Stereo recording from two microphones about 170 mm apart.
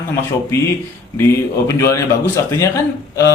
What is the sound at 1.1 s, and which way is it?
Speech, 15° left (ahead or behind).